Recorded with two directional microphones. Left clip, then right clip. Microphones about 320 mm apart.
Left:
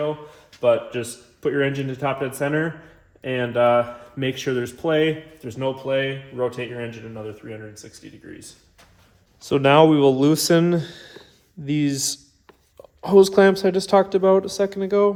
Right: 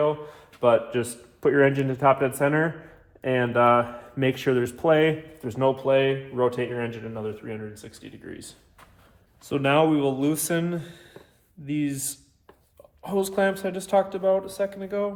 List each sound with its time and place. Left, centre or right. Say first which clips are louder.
0.6 s speech: left 1 dB; centre
9.5 s speech: left 6 dB; left